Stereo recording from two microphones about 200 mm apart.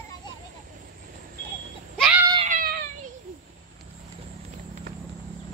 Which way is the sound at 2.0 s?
5° right (ahead or behind).